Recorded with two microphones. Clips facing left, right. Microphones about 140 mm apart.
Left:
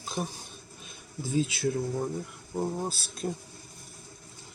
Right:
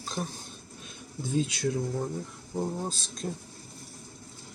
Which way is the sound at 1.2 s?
5° left (ahead or behind).